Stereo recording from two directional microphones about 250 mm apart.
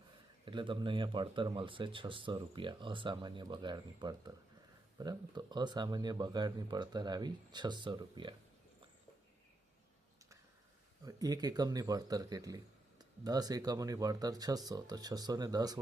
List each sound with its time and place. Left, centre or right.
0.4 s speech: centre
11.0 s speech: centre